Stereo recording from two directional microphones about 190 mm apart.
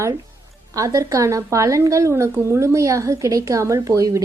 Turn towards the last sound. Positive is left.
turn(degrees=-15)  # may be behind; listen again after turning